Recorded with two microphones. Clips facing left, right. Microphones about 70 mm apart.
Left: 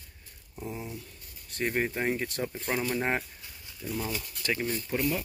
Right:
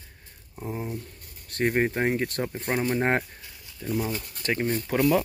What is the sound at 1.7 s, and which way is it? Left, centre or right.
Speech, right.